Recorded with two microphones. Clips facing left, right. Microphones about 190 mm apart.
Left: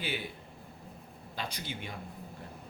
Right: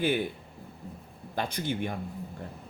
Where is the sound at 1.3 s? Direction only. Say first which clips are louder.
Right 9 dB; 55° right (ahead or behind).